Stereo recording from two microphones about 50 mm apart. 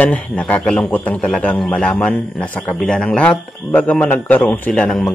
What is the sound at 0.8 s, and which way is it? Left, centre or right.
Speech, left.